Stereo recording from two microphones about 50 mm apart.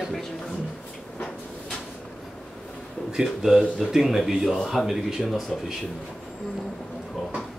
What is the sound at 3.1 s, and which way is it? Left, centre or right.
Speech, centre.